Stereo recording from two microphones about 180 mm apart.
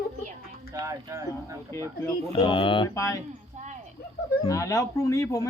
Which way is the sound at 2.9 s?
15° left (ahead or behind).